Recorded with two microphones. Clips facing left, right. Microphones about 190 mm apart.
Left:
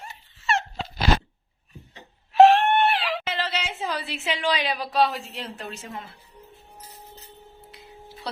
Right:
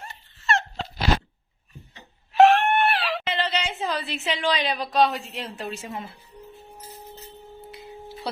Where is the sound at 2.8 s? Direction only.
15° left (ahead or behind).